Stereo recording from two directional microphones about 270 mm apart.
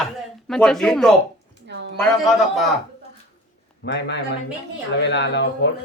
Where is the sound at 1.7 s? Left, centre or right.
Right.